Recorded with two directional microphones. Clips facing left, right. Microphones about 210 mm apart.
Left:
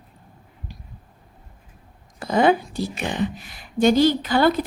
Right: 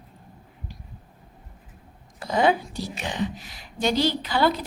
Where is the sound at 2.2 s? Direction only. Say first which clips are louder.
Left 4 dB; 55° left (ahead or behind).